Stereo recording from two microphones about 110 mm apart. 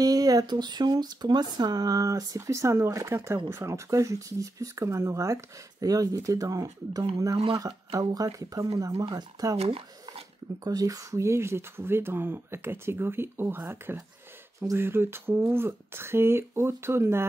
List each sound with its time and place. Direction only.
0.0 s speech: 35° right (ahead or behind)
9.6 s speech: 65° right (ahead or behind)
10.6 s speech: 35° right (ahead or behind)